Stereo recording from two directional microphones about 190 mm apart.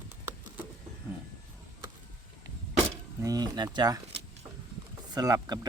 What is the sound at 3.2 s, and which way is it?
Speech, 20° right (ahead or behind).